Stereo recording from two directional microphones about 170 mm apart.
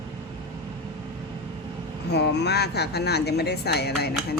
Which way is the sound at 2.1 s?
80° left.